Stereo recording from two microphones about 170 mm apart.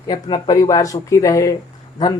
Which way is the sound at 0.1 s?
25° left (ahead or behind).